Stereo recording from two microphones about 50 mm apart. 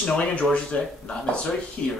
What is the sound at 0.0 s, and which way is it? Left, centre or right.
Speech, left.